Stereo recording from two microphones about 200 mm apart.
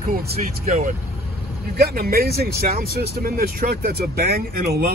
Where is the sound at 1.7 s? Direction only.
50° right (ahead or behind).